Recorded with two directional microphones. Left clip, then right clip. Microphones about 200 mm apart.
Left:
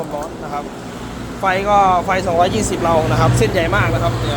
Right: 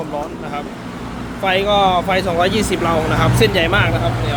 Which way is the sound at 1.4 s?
20° right (ahead or behind).